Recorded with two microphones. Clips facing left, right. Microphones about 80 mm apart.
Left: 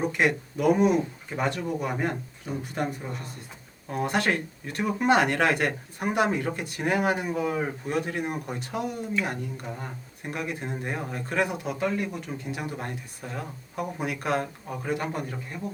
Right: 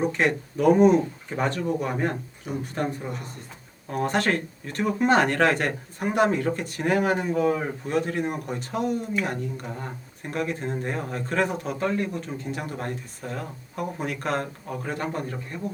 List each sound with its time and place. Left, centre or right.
0.0 s speech: centre
3.8 s speech: centre